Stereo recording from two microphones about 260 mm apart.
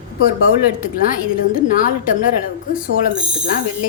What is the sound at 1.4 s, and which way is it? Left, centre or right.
Speech, left.